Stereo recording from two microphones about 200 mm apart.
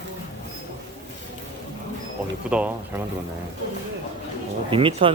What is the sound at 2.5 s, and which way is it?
Speech, 5° right (ahead or behind).